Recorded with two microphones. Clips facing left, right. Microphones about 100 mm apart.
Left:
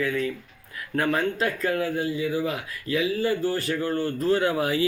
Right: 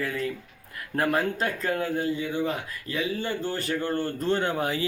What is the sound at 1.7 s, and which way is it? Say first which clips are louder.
Speech: left 1 dB; 30° right (ahead or behind).